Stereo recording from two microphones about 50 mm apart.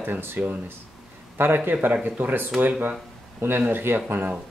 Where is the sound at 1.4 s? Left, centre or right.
Right.